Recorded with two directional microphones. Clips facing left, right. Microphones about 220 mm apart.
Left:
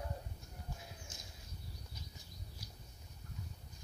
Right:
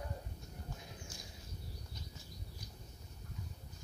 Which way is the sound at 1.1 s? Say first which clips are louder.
Right 3 dB; 20° left (ahead or behind).